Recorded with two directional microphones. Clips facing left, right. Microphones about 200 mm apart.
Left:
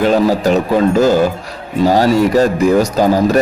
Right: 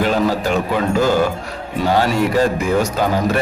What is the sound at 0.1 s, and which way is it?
Speech, 40° left (ahead or behind).